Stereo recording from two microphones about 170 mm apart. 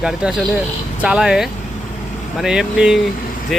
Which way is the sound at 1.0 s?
5° right (ahead or behind).